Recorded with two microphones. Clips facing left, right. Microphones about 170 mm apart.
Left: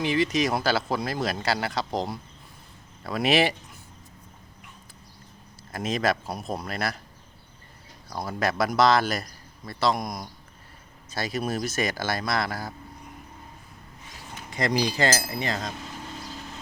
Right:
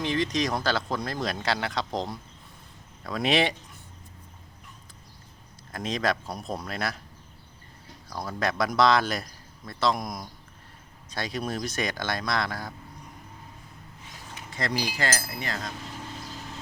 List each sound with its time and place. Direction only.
0.0 s speech: 5° left (ahead or behind)
5.7 s speech: 5° left (ahead or behind)
8.2 s speech: 5° left (ahead or behind)
14.5 s speech: 15° left (ahead or behind)